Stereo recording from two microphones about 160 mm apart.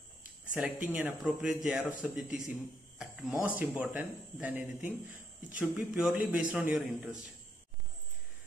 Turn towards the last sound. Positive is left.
turn(degrees=-5)  # may be behind; listen again after turning